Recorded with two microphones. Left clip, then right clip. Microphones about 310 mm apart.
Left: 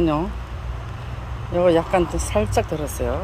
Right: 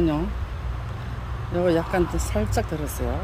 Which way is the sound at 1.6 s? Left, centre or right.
Centre.